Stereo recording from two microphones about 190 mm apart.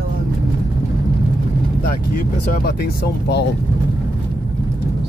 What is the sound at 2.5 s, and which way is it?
Speech, 55° left (ahead or behind).